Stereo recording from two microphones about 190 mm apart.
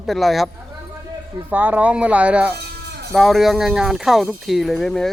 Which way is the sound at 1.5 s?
10° right (ahead or behind).